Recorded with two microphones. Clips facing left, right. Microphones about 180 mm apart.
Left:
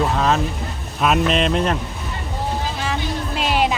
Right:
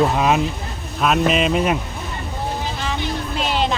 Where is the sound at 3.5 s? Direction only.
10° left (ahead or behind).